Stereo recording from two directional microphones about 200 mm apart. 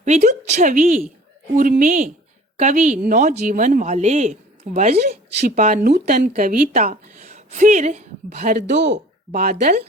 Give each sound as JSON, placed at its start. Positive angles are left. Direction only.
{"t": 0.0, "sound": "a woman's voice", "side_deg": -35}
{"t": 4.9, "sound": "speech", "side_deg": -50}
{"t": 8.5, "sound": "speech", "side_deg": -60}